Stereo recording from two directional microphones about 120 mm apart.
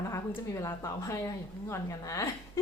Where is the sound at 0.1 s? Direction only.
25° left (ahead or behind).